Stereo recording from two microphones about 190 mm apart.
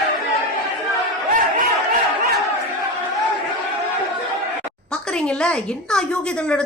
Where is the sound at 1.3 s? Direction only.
45° right (ahead or behind).